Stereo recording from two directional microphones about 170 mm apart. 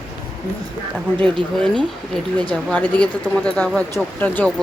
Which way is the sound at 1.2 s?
30° right (ahead or behind).